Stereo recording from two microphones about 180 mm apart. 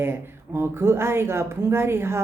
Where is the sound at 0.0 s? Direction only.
15° right (ahead or behind).